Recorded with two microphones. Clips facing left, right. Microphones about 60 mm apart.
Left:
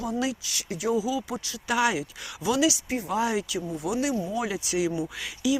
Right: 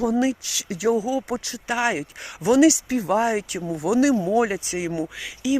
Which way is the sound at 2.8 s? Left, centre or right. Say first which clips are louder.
Right 6 dB; right.